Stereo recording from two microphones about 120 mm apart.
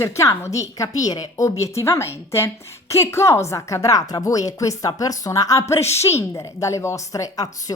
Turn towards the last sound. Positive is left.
turn(degrees=30)  # may be behind; listen again after turning